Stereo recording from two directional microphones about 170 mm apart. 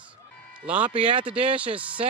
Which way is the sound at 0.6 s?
5° right (ahead or behind).